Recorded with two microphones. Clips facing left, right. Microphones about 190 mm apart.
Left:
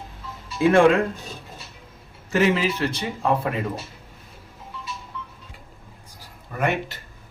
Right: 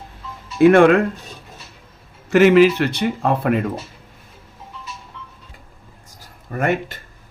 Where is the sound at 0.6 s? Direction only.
65° right (ahead or behind).